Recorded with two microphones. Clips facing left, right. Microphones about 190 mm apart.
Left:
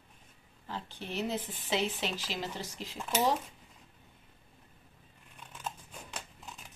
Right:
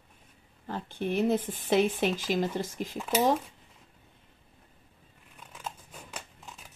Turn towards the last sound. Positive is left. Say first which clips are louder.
# right 1 dB
turn(degrees=-5)  # may be behind; listen again after turning